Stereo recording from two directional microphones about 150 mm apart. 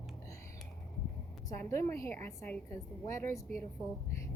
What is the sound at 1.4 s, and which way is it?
A woman's voice, 20° left (ahead or behind).